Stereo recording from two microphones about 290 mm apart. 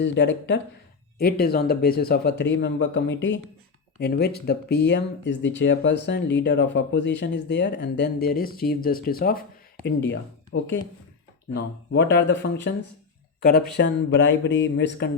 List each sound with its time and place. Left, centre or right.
0.0 s speech: left
12.1 s speech: left